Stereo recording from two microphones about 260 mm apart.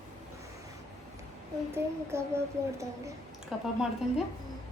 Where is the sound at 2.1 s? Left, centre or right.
Centre.